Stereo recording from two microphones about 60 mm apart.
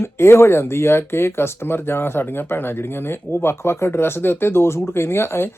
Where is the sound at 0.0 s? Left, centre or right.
Left.